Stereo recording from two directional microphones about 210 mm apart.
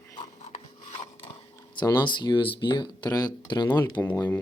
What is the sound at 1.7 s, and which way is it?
Speech, 20° left (ahead or behind).